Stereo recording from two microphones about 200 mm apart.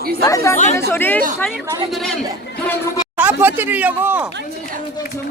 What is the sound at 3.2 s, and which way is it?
Speech, 10° right (ahead or behind).